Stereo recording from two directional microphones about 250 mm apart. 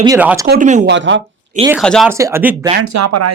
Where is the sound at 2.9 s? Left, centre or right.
Right.